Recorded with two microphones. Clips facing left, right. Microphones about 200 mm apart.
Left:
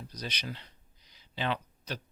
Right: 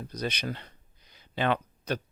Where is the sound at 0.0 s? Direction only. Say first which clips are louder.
Right 7 dB; 55° right (ahead or behind).